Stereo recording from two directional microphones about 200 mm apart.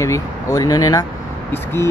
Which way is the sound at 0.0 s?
15° left (ahead or behind).